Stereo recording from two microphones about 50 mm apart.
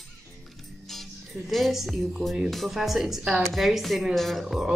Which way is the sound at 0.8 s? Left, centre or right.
Centre.